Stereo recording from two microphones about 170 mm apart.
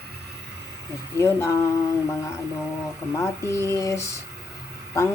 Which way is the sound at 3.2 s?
15° left (ahead or behind).